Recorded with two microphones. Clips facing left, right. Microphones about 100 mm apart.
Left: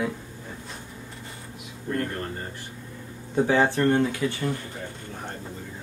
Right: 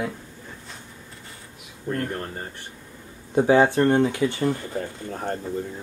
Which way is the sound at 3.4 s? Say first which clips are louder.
Right 4 dB; 15° right (ahead or behind).